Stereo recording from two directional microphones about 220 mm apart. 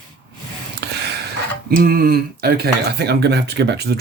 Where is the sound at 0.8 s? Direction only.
50° right (ahead or behind).